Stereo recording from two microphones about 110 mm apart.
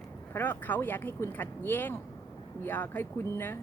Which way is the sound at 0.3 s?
20° left (ahead or behind).